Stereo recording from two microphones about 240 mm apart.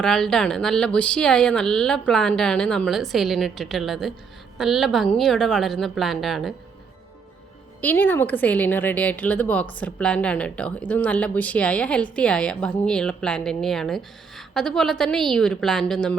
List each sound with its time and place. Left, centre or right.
0.0 s a woman's voice: centre
7.8 s a woman's voice: centre